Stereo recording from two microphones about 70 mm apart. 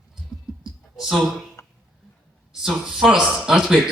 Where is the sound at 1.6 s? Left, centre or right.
Left.